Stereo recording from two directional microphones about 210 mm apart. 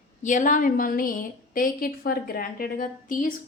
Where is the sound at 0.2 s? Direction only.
35° left (ahead or behind).